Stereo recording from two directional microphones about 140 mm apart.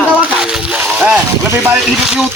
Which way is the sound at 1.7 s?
5° right (ahead or behind).